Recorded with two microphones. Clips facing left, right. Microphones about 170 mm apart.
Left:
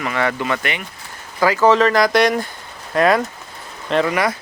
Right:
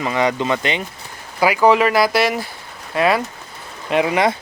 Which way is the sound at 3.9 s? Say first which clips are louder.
Right 1 dB; 15° right (ahead or behind).